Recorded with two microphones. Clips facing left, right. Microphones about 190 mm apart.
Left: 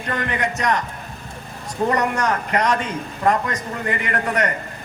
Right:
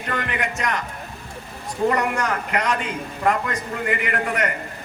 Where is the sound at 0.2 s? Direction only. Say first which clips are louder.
Left 3 dB; 40° left (ahead or behind).